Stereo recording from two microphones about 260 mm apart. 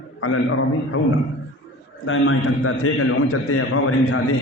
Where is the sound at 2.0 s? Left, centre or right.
Left.